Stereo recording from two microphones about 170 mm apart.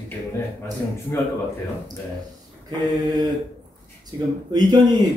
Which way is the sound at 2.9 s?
25° right (ahead or behind).